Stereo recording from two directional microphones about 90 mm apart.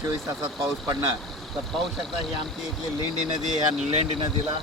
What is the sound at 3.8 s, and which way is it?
Speech, 90° right.